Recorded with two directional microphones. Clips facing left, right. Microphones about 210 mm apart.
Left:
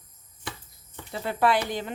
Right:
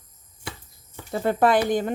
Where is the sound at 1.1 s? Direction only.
50° right (ahead or behind).